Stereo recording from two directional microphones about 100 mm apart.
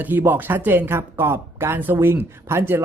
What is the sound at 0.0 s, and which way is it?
A man's voice, 20° right (ahead or behind).